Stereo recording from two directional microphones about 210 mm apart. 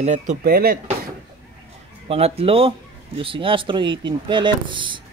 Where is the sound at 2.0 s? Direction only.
30° right (ahead or behind).